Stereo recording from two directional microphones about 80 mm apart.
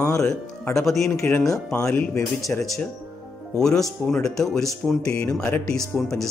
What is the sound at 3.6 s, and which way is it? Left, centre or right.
Speech, centre.